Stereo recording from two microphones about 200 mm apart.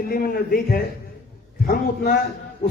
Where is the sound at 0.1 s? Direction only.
45° left (ahead or behind).